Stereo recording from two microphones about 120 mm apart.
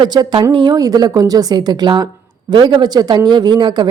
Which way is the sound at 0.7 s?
30° right (ahead or behind).